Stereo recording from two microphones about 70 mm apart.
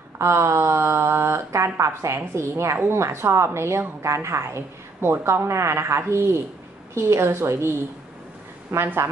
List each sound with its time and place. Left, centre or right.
0.2 s a woman's voice: right
8.7 s a woman's voice: right